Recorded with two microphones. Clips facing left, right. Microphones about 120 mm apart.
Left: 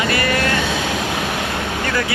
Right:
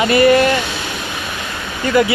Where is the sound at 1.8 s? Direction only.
20° right (ahead or behind).